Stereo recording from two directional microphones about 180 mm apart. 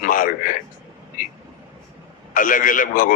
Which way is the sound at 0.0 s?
50° left (ahead or behind).